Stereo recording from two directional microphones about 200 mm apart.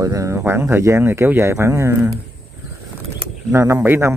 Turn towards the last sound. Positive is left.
turn(degrees=-10)  # may be behind; listen again after turning